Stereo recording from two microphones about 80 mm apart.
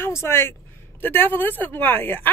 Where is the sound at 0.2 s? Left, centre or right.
Left.